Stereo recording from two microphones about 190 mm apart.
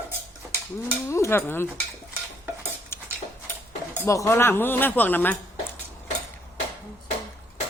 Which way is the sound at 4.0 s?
15° left (ahead or behind).